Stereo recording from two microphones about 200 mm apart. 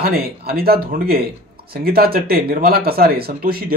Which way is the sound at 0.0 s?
50° right (ahead or behind).